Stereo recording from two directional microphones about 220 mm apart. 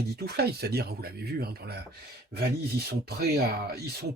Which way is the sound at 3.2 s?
45° right (ahead or behind).